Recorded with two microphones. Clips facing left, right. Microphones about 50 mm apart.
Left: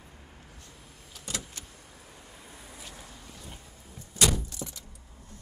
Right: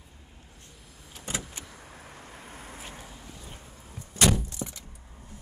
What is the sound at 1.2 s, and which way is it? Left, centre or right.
Vehicle, right.